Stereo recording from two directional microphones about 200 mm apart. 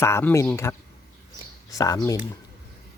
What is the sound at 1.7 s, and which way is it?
Speech, 15° left (ahead or behind).